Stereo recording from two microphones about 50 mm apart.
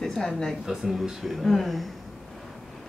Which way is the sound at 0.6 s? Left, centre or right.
Centre.